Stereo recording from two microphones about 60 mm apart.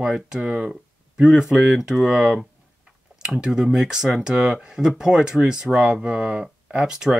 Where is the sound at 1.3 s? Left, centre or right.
Centre.